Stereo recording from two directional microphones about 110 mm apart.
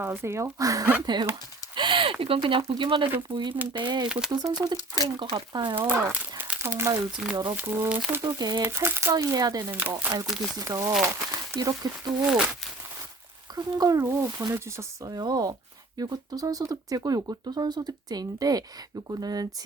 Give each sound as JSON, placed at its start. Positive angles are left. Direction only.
{"t": 0.0, "sound": "speech", "side_deg": -20}
{"t": 1.7, "sound": "a sound", "side_deg": -50}
{"t": 2.2, "sound": "speech", "side_deg": -50}
{"t": 5.7, "sound": "speech", "side_deg": -20}
{"t": 8.4, "sound": "speech", "side_deg": -35}
{"t": 8.6, "sound": "speech", "side_deg": -20}
{"t": 9.1, "sound": "speech", "side_deg": -35}
{"t": 9.7, "sound": "speech", "side_deg": -20}
{"t": 10.2, "sound": "speech", "side_deg": 0}
{"t": 10.6, "sound": "speech", "side_deg": -30}
{"t": 12.2, "sound": "speech", "side_deg": -10}
{"t": 13.6, "sound": "speech", "side_deg": -35}